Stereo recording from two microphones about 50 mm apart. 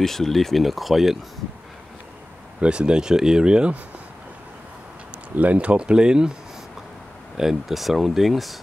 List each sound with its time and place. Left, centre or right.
0.0 s speech: centre
2.6 s speech: centre
5.3 s speech: right
7.3 s speech: centre